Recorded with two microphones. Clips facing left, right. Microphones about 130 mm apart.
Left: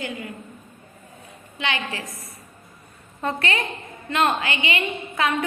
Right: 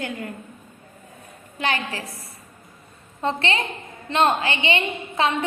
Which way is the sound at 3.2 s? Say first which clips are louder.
Right 1 dB; 25° right (ahead or behind).